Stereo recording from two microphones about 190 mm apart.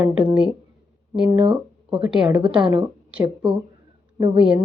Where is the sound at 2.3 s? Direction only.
25° right (ahead or behind).